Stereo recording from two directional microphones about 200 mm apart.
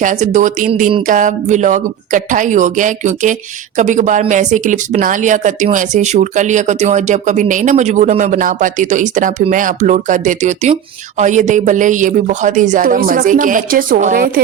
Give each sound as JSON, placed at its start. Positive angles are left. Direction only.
{"t": 0.0, "sound": "speech", "side_deg": -40}